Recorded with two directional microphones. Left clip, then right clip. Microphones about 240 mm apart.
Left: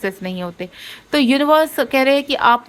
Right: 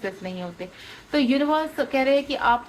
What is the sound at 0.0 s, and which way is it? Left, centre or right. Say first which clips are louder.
A woman's voice: left 7 dB; left.